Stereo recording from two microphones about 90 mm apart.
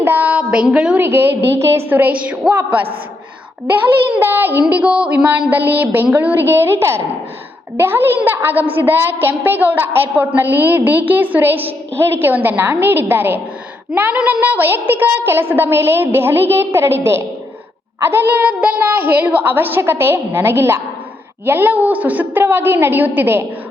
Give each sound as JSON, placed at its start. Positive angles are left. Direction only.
{"t": 0.0, "sound": "a woman's voice", "side_deg": -20}
{"t": 0.9, "sound": "a woman's voice", "side_deg": -25}
{"t": 4.2, "sound": "a woman's voice", "side_deg": -25}
{"t": 4.7, "sound": "a woman's voice", "side_deg": -15}